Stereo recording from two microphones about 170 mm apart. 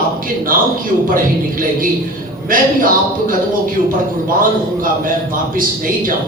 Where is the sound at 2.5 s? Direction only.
55° right (ahead or behind).